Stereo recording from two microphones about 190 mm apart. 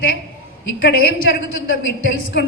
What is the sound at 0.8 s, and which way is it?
A woman's voice, 55° left (ahead or behind).